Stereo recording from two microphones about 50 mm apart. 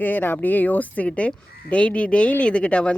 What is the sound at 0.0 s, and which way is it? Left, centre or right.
Speech, left.